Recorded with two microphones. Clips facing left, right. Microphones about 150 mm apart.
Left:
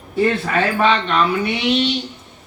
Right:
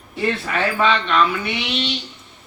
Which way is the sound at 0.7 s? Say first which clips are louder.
Left 1 dB; 45° left (ahead or behind).